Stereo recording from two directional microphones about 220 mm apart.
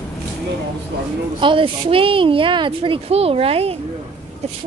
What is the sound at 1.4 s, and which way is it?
A woman's voice, 25° right (ahead or behind).